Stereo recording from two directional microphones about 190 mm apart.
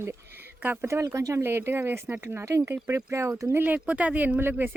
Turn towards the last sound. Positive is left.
turn(degrees=-10)  # may be behind; listen again after turning